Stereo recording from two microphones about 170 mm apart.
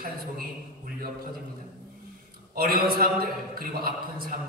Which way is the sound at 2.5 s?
65° right (ahead or behind).